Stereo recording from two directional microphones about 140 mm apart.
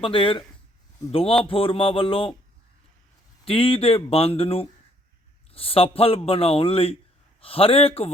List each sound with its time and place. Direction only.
0.0 s speech: 40° left (ahead or behind)
3.4 s speech: 40° left (ahead or behind)